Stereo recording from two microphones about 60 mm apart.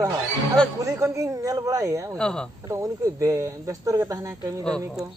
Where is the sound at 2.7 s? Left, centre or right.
Right.